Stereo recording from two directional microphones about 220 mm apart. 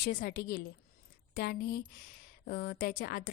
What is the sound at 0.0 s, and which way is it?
A woman's voice, 40° left (ahead or behind).